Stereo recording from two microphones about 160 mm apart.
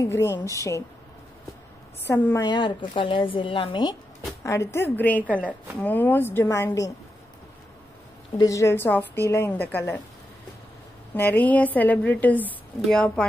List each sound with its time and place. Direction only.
0.0 s a woman's voice: 15° left (ahead or behind)
2.0 s a woman's voice: 10° left (ahead or behind)
2.4 s speech: 25° left (ahead or behind)
4.4 s a woman's voice: 20° left (ahead or behind)
8.4 s a woman's voice: 20° left (ahead or behind)
11.1 s a woman's voice: 15° left (ahead or behind)